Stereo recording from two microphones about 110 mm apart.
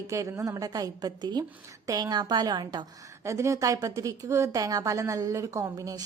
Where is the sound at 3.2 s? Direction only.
30° right (ahead or behind).